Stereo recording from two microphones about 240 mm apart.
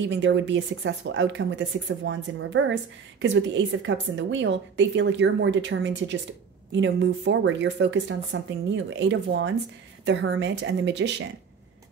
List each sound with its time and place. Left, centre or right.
0.1 s speech: right